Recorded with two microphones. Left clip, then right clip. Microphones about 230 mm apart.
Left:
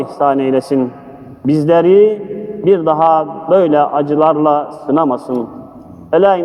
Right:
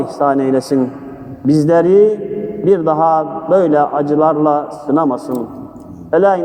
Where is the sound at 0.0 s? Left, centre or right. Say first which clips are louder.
Left 1 dB; left.